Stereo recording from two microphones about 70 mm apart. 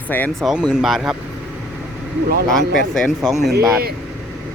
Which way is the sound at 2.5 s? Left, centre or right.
Centre.